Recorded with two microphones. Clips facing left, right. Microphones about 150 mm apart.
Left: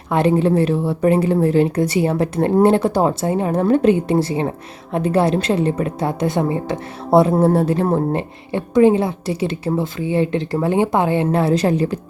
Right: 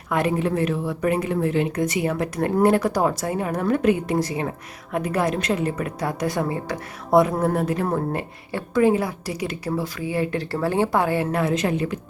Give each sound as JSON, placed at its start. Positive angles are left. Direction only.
{"t": 0.1, "sound": "a woman's voice", "side_deg": 30}